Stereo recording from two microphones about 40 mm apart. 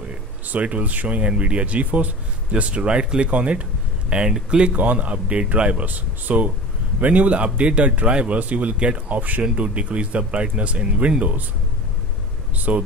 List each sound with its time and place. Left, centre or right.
0.5 s speech: right
1.2 s speech: right
4.1 s speech: right
9.1 s speech: right
9.4 s speech: right
12.5 s speech: right